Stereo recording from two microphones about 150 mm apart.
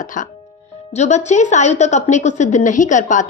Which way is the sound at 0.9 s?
50° left (ahead or behind).